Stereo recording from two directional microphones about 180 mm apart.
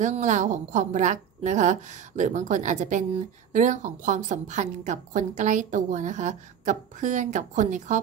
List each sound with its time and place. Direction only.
0.0 s a woman's voice: 45° right (ahead or behind)